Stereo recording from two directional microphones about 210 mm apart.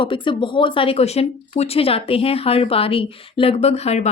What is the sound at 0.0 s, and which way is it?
Speech, 25° left (ahead or behind).